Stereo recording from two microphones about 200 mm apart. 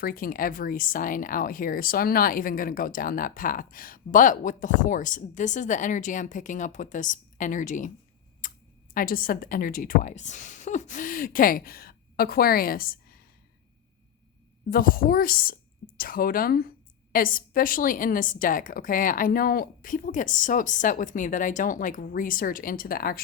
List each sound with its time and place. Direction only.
0.0 s speech: 45° left (ahead or behind)
14.7 s speech: 45° left (ahead or behind)